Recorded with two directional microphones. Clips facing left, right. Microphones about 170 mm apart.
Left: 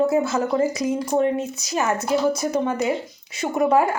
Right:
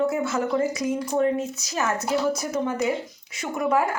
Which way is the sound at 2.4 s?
25° left (ahead or behind).